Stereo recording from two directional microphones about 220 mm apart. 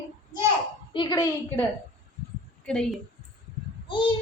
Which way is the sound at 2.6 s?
5° left (ahead or behind).